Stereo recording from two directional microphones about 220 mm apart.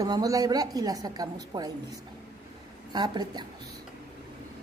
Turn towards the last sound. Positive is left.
turn(degrees=-20)  # may be behind; listen again after turning